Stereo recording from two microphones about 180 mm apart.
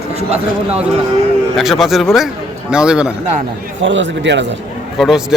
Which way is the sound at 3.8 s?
90° right.